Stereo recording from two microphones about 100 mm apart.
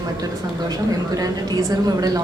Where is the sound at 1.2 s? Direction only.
40° right (ahead or behind).